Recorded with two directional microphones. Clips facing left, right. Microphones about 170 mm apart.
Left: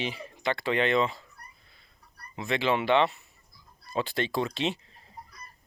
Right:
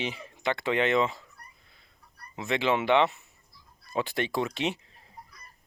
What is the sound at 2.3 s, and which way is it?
Speech, 20° right (ahead or behind).